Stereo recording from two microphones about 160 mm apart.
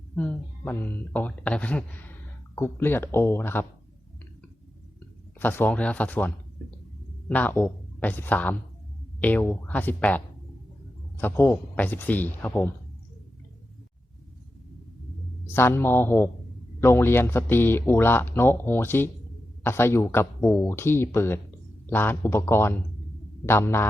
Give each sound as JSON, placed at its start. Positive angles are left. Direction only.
{"t": 0.2, "sound": "speech", "side_deg": 10}
{"t": 5.4, "sound": "speech", "side_deg": 10}
{"t": 15.5, "sound": "speech", "side_deg": 15}